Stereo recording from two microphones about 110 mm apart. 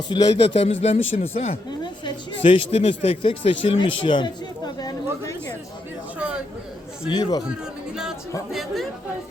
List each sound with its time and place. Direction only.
0.1 s speech: 40° left (ahead or behind)
0.5 s speech: 75° left (ahead or behind)
1.8 s speech: 50° left (ahead or behind)
7.1 s speech: 40° left (ahead or behind)
8.5 s speech: centre (ahead or behind)